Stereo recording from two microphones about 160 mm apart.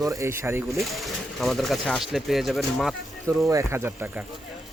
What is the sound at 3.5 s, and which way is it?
Speech, 15° right (ahead or behind).